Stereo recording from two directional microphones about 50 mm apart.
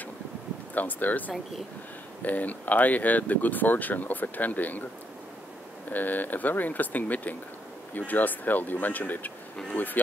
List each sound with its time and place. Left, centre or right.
0.7 s speech: left
5.9 s speech: left